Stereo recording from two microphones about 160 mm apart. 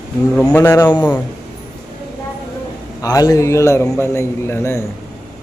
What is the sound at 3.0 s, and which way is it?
A man's voice, 25° left (ahead or behind).